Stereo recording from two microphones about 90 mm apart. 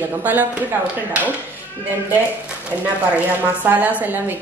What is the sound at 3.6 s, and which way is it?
Speech, 15° right (ahead or behind).